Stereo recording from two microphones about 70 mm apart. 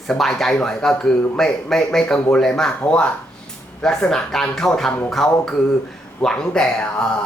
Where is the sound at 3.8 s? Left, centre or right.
Centre.